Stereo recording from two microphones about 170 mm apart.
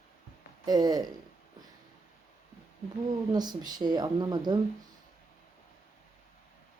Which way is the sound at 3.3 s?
25° right (ahead or behind).